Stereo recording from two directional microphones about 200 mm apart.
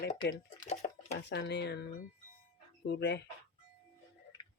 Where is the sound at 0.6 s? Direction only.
35° left (ahead or behind).